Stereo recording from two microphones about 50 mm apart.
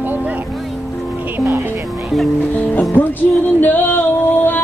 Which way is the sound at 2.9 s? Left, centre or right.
Left.